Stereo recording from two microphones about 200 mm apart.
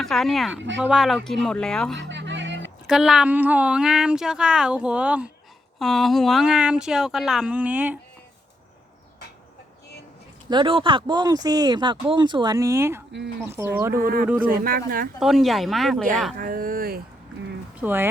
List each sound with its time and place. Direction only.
0.0 s a woman's voice: centre (ahead or behind)
2.0 s a sound: 65° right (ahead or behind)
2.8 s a woman's voice: centre (ahead or behind)
10.5 s speech: 25° right (ahead or behind)
14.0 s speech: 45° right (ahead or behind)
15.2 s a woman's voice: centre (ahead or behind)
16.4 s speech: 45° right (ahead or behind)
17.7 s speech: 10° right (ahead or behind)